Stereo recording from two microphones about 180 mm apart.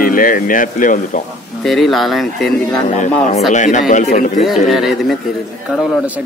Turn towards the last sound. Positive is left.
turn(degrees=0)  # may be behind; listen again after turning